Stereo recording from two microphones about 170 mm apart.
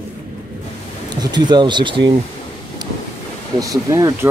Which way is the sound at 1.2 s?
25° right (ahead or behind).